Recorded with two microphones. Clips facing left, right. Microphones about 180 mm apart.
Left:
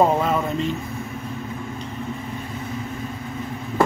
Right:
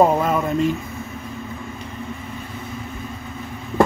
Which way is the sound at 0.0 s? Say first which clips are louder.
Right 2 dB; centre (ahead or behind).